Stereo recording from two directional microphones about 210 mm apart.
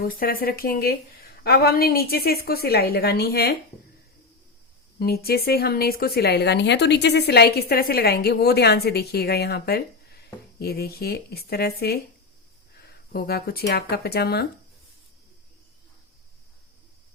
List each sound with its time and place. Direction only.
0.0 s speech: 45° left (ahead or behind)
4.9 s speech: 45° left (ahead or behind)